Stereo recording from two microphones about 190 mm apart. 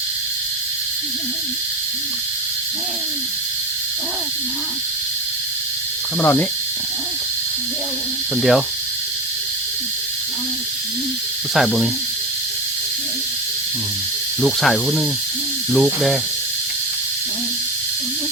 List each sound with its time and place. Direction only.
6.1 s speech: 5° left (ahead or behind)
8.4 s speech: centre (ahead or behind)
11.5 s speech: centre (ahead or behind)
14.4 s speech: centre (ahead or behind)